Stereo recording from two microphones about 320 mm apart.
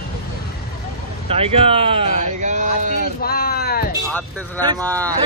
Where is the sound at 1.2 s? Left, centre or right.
Centre.